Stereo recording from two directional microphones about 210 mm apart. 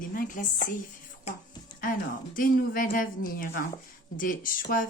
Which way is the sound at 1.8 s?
40° left (ahead or behind).